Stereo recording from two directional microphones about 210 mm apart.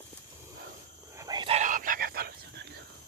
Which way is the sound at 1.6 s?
40° right (ahead or behind).